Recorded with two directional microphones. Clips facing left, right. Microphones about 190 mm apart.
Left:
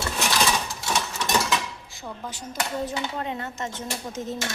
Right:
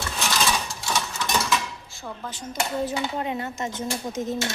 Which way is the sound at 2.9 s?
10° right (ahead or behind).